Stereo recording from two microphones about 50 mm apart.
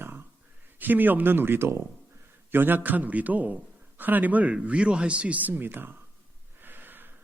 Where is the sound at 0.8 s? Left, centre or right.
Right.